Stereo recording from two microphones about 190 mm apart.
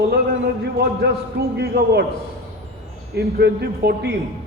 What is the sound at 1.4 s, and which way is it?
Speech, 55° right (ahead or behind).